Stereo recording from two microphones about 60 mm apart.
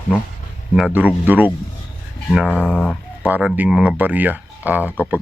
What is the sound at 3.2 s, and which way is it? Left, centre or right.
Speech, right.